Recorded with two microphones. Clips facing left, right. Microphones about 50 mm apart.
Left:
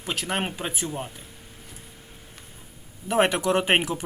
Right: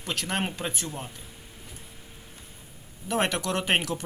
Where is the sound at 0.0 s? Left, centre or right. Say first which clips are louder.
Left 2 dB; centre.